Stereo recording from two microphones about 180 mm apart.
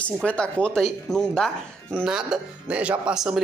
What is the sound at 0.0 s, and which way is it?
Speech, 5° left (ahead or behind).